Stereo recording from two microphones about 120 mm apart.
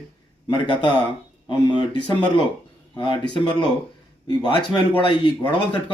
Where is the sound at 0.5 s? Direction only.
40° left (ahead or behind).